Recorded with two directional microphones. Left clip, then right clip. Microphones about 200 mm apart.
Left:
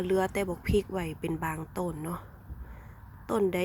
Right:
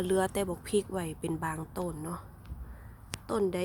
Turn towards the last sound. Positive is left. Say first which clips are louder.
# left 2 dB
turn(degrees=15)  # may be behind; listen again after turning